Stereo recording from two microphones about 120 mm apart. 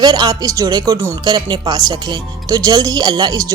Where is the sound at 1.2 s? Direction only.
35° right (ahead or behind).